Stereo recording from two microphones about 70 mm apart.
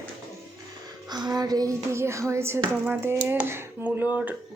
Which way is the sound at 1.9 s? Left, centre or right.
Right.